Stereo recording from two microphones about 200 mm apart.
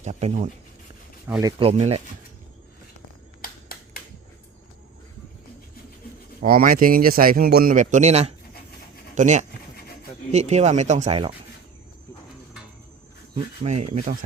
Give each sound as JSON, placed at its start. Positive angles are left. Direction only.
{"t": 0.0, "sound": "speech", "side_deg": -35}
{"t": 1.4, "sound": "speech", "side_deg": -20}
{"t": 3.4, "sound": "finger snapping", "side_deg": 45}
{"t": 6.4, "sound": "speech", "side_deg": -45}
{"t": 13.3, "sound": "speech", "side_deg": -35}